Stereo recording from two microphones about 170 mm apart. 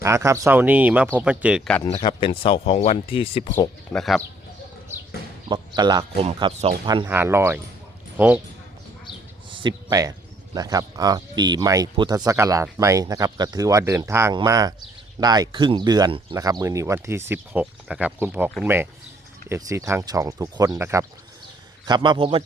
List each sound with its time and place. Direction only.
0.0 s speech: 15° right (ahead or behind)
1.8 s speech: 30° left (ahead or behind)
3.9 s speech: centre (ahead or behind)
5.5 s speech: 25° right (ahead or behind)
6.2 s speech: 35° right (ahead or behind)
6.8 s speech: 25° right (ahead or behind)
7.1 s speech: 15° right (ahead or behind)
9.5 s speech: 30° right (ahead or behind)
21.8 s speech: 25° right (ahead or behind)